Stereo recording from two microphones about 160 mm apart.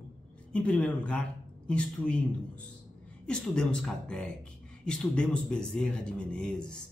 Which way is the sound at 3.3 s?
5° left (ahead or behind).